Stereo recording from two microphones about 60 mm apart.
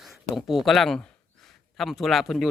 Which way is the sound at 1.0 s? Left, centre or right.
Centre.